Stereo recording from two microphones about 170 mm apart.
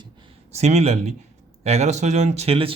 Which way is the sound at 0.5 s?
40° right (ahead or behind).